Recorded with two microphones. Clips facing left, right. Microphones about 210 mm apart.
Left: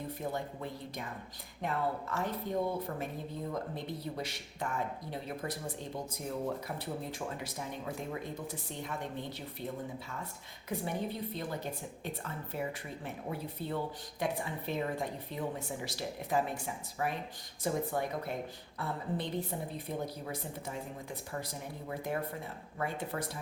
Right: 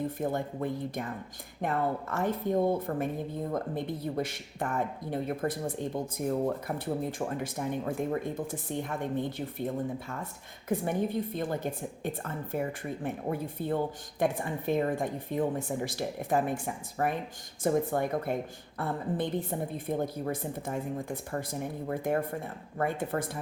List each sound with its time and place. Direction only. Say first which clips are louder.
0.2 s a woman's voice: right 6 dB; 50° right (ahead or behind)